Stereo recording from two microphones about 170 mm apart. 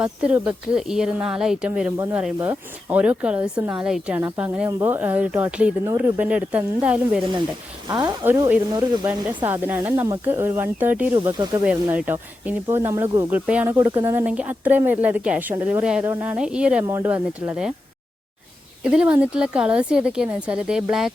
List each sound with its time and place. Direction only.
0.0 s a woman's voice: 5° right (ahead or behind)
7.9 s speech: 25° right (ahead or behind)
8.2 s speech: 10° right (ahead or behind)
11.2 s speech: 25° right (ahead or behind)
11.6 s speech: 5° right (ahead or behind)
18.8 s a woman's voice: 5° right (ahead or behind)